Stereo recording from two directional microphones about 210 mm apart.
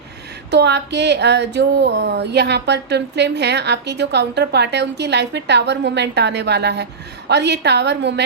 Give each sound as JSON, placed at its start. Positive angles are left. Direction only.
{"t": 0.5, "sound": "speech", "side_deg": -55}